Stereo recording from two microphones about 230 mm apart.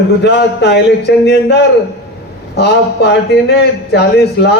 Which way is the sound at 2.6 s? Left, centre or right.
Left.